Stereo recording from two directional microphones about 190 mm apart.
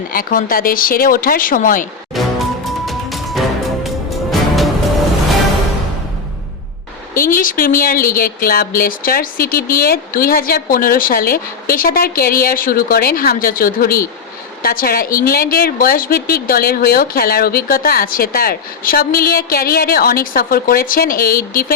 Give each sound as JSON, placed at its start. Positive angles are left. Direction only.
{"t": 0.1, "sound": "a woman's voice", "side_deg": 50}
{"t": 2.2, "sound": "music", "side_deg": 0}
{"t": 7.2, "sound": "a woman's voice", "side_deg": 45}